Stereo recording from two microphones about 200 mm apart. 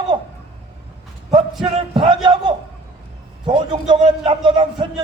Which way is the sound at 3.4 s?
25° right (ahead or behind).